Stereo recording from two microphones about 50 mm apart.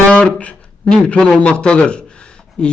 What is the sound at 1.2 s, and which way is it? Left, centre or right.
A man's voice, centre.